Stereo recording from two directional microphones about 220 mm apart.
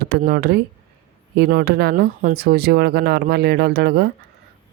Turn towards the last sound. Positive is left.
turn(degrees=-45)  # may be behind; listen again after turning